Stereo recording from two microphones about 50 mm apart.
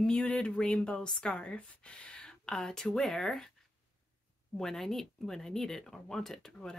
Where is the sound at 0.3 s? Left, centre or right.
Centre.